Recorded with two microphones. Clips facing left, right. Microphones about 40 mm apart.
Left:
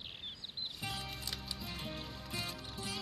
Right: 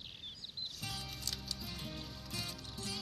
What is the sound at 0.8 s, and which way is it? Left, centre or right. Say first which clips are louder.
Music: left 3 dB; centre.